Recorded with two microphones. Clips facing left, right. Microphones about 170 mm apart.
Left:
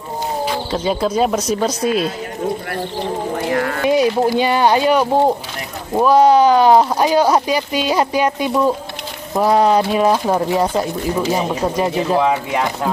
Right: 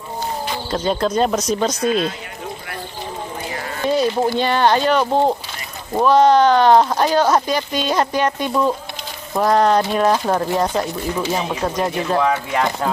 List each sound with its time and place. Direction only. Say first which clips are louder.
0.5 s speech: even; 5° left (ahead or behind)
2.7 s insect: left 7 dB; 65° left (ahead or behind)
3.9 s speech: left 2 dB; 15° left (ahead or behind)